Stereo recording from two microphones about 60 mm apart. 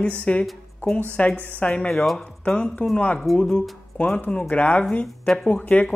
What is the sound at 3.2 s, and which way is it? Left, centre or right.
Speech, centre.